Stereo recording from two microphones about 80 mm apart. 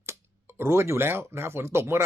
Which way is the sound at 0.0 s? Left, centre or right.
Right.